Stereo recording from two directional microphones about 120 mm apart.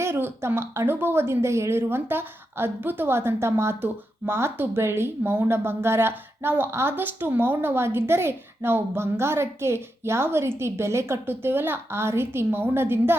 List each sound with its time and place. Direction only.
0.0 s speech: 20° right (ahead or behind)